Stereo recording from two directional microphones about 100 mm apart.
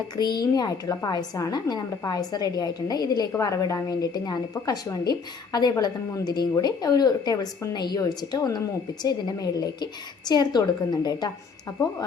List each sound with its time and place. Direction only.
0.2 s a woman's voice: 45° left (ahead or behind)